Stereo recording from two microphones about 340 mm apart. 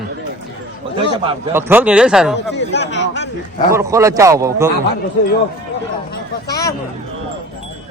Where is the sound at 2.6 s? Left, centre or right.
Left.